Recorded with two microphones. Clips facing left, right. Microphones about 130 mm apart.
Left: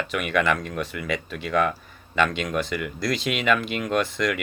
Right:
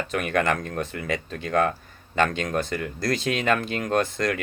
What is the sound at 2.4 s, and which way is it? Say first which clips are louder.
Speech: even; 45° right (ahead or behind).